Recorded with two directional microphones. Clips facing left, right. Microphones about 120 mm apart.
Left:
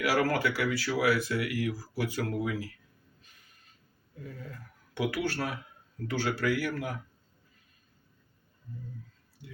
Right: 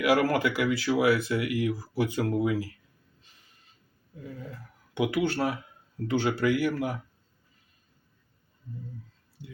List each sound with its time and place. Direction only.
0.0 s speech: 20° right (ahead or behind)
4.2 s speech: 20° right (ahead or behind)